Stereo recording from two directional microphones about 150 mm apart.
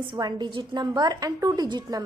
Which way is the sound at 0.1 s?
30° right (ahead or behind).